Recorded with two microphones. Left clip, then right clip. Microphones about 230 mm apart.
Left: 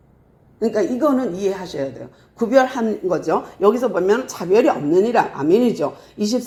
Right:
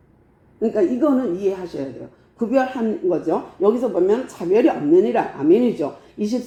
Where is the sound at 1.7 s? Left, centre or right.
Left.